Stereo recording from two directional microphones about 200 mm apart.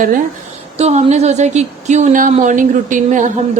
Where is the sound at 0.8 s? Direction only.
35° right (ahead or behind).